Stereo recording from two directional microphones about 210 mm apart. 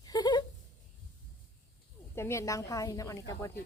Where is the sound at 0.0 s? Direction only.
20° left (ahead or behind).